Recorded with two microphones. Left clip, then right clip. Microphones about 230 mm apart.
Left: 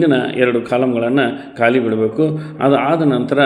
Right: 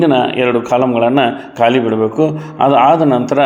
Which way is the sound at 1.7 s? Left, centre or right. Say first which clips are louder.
Left 1 dB; centre.